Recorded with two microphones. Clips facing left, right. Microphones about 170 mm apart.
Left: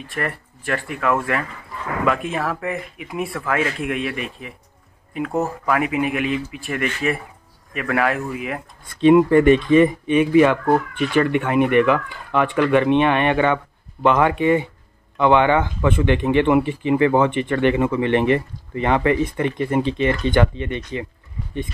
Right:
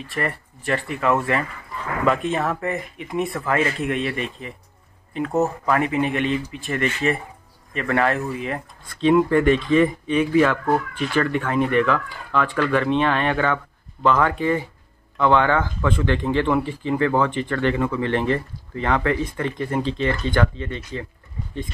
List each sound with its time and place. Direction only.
0.0 s speech: centre (ahead or behind); by 10.8 s 20° left (ahead or behind)
11.8 s speech: 15° left (ahead or behind)